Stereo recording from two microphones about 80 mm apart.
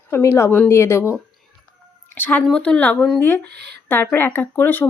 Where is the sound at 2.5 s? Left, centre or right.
Centre.